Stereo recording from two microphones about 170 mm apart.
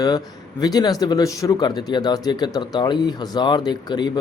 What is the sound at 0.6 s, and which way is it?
Speech, 25° left (ahead or behind).